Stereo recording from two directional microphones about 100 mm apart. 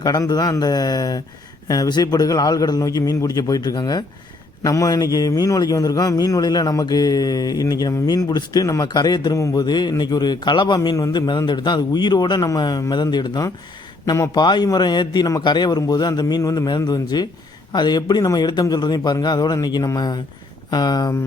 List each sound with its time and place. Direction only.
0.0 s a man's voice: 40° left (ahead or behind)